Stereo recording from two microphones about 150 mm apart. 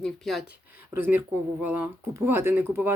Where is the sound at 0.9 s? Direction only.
15° right (ahead or behind).